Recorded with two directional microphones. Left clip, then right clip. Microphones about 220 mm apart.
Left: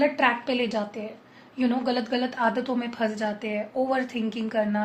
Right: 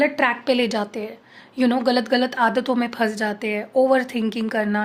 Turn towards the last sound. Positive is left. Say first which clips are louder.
# right 3 dB
turn(degrees=-50)  # may be behind; listen again after turning